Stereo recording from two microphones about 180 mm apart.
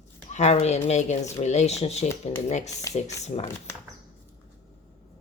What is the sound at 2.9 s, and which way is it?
Speech, 20° left (ahead or behind).